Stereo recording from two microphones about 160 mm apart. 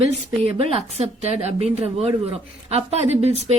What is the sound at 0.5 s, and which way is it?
A woman's voice, 40° right (ahead or behind).